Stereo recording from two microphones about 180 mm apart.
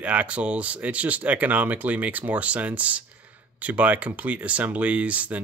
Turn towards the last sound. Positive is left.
turn(degrees=-10)  # may be behind; listen again after turning